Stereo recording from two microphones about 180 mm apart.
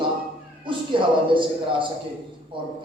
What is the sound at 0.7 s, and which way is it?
Meow, 25° right (ahead or behind).